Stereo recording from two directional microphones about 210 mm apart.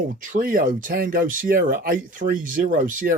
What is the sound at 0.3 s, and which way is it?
Speech, 40° right (ahead or behind).